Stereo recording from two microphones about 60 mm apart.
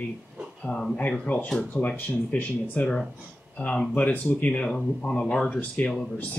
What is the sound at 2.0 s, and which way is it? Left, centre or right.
Speech, left.